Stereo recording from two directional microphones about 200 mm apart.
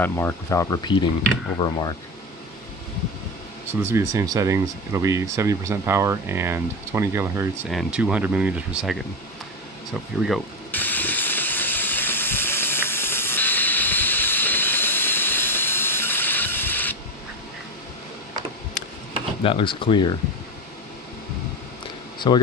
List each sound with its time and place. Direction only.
0.0 s speech: 10° left (ahead or behind)
3.6 s speech: 15° right (ahead or behind)
10.2 s steam: 5° left (ahead or behind)
19.4 s speech: 25° left (ahead or behind)
22.2 s speech: 20° left (ahead or behind)